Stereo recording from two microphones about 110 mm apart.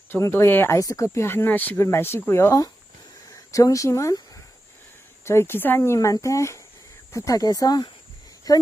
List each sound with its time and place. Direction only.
0.1 s speech: 25° left (ahead or behind)
0.8 s speech: 30° left (ahead or behind)
5.2 s speech: 25° left (ahead or behind)